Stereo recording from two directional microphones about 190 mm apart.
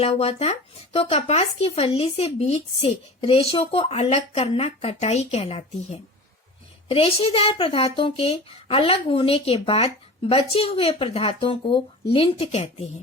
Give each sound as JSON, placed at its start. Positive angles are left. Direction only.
{"t": 0.0, "sound": "speech", "side_deg": 30}